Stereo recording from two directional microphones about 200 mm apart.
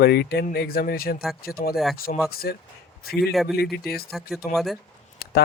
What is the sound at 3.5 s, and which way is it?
Speech, 50° left (ahead or behind).